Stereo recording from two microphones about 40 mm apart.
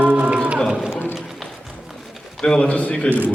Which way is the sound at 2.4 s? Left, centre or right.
Left.